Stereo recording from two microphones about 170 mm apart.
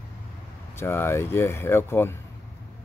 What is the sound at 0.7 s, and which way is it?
Speech, 15° left (ahead or behind).